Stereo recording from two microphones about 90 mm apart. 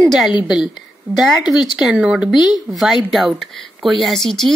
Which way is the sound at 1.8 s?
10° right (ahead or behind).